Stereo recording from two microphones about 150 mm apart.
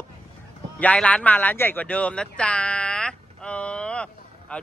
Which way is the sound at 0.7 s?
10° left (ahead or behind).